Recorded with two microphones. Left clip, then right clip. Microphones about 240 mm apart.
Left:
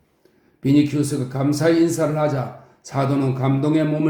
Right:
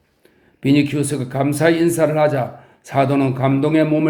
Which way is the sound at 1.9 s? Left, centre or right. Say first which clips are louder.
Right 5 dB; right.